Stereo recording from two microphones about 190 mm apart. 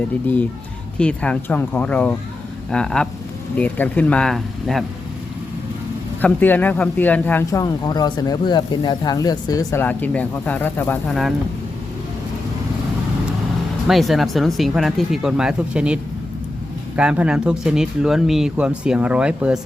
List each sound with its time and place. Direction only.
0.9 s speech: 5° left (ahead or behind)
6.2 s speech: 10° left (ahead or behind)
9.8 s speech: 10° left (ahead or behind)
13.8 s speech: centre (ahead or behind)
17.0 s speech: 5° right (ahead or behind)